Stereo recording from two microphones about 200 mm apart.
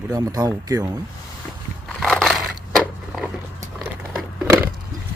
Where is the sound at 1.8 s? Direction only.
Centre (ahead or behind).